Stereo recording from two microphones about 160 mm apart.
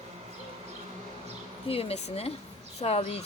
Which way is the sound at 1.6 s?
35° left (ahead or behind).